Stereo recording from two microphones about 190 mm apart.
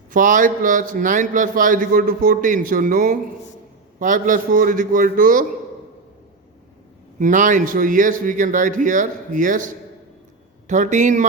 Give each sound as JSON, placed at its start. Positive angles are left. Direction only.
{"t": 0.1, "sound": "a man's voice", "side_deg": -45}
{"t": 7.2, "sound": "a man's voice", "side_deg": -40}